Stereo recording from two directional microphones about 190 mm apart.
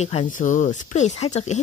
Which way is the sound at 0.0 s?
35° left (ahead or behind).